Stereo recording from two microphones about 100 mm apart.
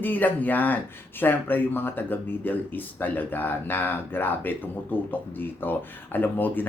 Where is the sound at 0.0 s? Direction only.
20° left (ahead or behind).